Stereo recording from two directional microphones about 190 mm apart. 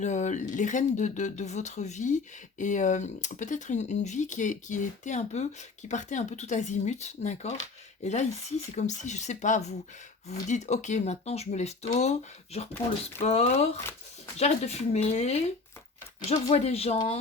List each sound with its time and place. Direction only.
0.0 s speech: 40° left (ahead or behind)
13.2 s speech: 35° left (ahead or behind)